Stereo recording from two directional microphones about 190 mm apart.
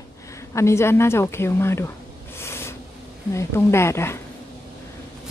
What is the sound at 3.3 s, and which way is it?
Speech, 15° left (ahead or behind).